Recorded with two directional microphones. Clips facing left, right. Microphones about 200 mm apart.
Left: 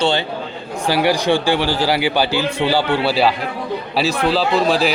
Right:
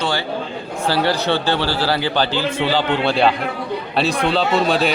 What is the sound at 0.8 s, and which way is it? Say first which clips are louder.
A man's voice: left 2 dB; 15° left (ahead or behind).